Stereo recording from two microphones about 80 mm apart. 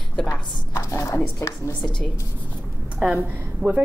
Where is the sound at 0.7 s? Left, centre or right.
Left.